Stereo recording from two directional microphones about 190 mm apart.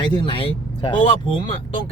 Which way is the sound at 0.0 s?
25° left (ahead or behind).